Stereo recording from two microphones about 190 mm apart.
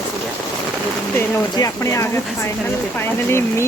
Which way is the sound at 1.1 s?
15° left (ahead or behind).